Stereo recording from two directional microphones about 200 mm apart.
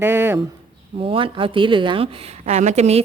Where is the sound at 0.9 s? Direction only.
25° right (ahead or behind).